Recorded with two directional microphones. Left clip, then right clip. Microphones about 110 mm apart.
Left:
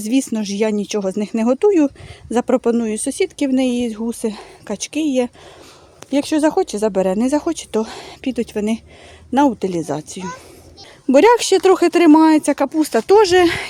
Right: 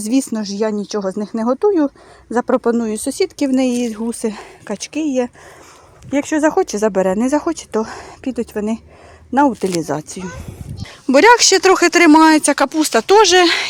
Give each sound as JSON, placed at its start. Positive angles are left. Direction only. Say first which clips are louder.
{"t": 0.0, "sound": "speech", "louder": "right 1 dB", "side_deg": -5}
{"t": 0.3, "sound": "speech", "louder": "even", "side_deg": 15}
{"t": 2.6, "sound": "speech", "louder": "right 1 dB", "side_deg": 0}
{"t": 6.3, "sound": "speech", "louder": "right 1 dB", "side_deg": 0}
{"t": 6.6, "sound": "speech", "louder": "right 2 dB", "side_deg": -15}
{"t": 9.6, "sound": "speech", "louder": "right 2 dB", "side_deg": -10}
{"t": 11.1, "sound": "speech", "louder": "right 2 dB", "side_deg": 25}